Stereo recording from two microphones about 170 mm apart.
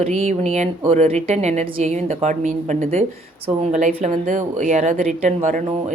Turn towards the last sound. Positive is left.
turn(degrees=-45)  # may be behind; listen again after turning